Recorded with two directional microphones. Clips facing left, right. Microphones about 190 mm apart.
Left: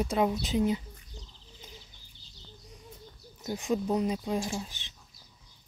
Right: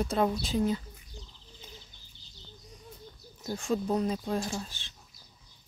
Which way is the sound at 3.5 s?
20° left (ahead or behind).